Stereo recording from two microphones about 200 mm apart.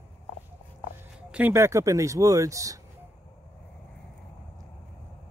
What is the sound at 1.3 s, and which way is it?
Speech, 10° right (ahead or behind).